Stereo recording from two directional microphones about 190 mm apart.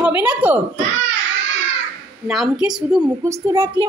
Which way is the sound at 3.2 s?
15° right (ahead or behind).